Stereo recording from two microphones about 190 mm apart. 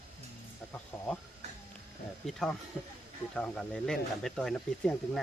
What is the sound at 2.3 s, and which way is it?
Speech, centre (ahead or behind).